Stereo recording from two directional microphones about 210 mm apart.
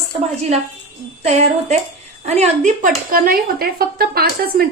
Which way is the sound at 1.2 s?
30° right (ahead or behind).